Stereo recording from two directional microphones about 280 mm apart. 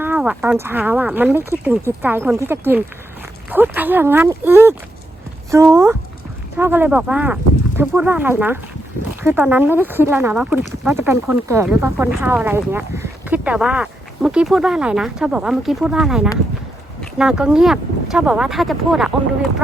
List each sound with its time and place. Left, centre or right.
0.0 s speech: centre